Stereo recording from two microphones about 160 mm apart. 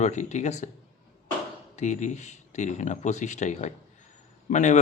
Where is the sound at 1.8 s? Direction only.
45° left (ahead or behind).